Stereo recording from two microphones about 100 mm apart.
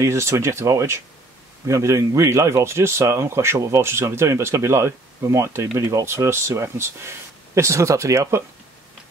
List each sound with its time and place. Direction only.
0.0 s speech: 30° right (ahead or behind)